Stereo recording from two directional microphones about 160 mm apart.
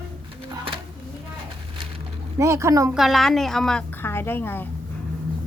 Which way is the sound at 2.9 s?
Centre (ahead or behind).